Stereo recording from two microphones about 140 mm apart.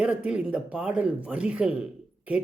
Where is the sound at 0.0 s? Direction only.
10° right (ahead or behind).